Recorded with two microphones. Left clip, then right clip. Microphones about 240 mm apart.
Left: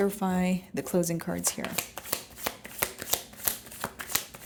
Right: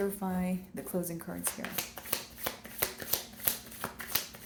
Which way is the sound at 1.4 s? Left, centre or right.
Left.